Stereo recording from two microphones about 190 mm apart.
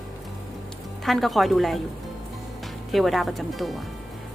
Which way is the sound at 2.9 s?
Centre (ahead or behind).